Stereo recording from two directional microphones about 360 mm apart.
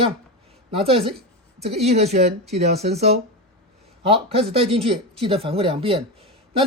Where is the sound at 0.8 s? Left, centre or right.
Centre.